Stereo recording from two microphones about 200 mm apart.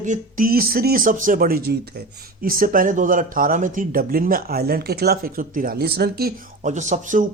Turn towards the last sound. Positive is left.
turn(degrees=-40)  # may be behind; listen again after turning